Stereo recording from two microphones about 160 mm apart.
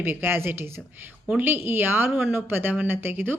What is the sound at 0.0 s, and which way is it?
A woman's voice, 15° right (ahead or behind).